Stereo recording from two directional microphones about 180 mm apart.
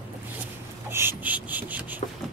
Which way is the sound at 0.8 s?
10° right (ahead or behind).